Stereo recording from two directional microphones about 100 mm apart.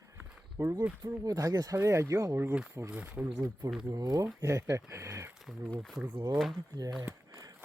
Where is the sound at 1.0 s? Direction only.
35° right (ahead or behind).